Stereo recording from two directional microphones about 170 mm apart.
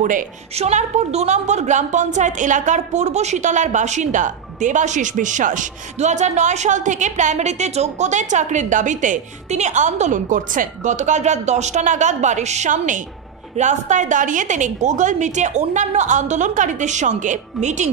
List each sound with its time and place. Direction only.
0.0 s a woman's voice: 50° right (ahead or behind)